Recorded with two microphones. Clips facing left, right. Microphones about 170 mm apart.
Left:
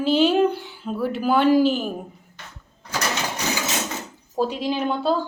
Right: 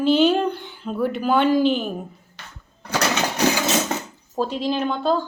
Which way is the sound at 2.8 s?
65° right (ahead or behind).